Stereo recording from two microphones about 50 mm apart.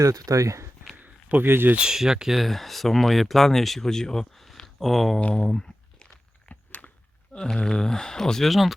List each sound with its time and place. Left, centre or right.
0.0 s speech: right
1.0 s a sound: right
1.5 s speech: right
1.8 s speech: centre
5.3 s a sound: centre
6.5 s walk: left
7.3 s speech: centre